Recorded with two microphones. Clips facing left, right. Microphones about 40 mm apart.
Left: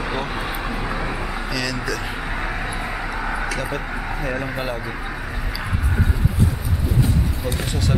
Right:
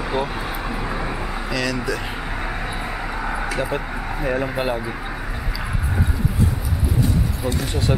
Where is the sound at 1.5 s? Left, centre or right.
Centre.